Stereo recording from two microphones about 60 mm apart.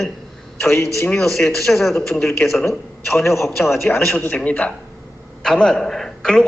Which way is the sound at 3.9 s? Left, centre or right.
Left.